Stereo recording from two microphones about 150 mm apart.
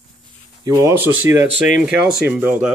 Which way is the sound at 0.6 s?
25° right (ahead or behind).